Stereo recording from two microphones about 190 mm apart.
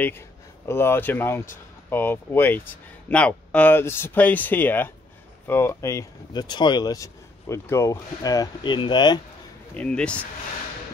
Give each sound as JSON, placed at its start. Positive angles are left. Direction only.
{"t": 0.7, "sound": "speech", "side_deg": 10}
{"t": 9.8, "sound": "speech", "side_deg": 5}